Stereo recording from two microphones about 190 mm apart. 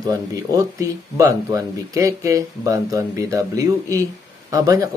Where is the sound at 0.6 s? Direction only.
15° right (ahead or behind).